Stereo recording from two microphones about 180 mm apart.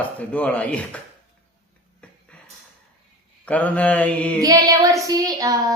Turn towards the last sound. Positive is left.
turn(degrees=-20)  # may be behind; listen again after turning